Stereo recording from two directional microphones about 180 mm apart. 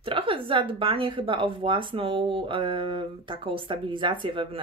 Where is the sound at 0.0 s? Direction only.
30° right (ahead or behind).